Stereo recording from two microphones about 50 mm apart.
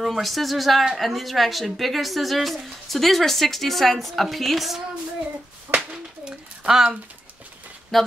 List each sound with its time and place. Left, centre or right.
0.0 s a woman's voice: centre
5.9 s a sound: centre
7.9 s a woman's voice: centre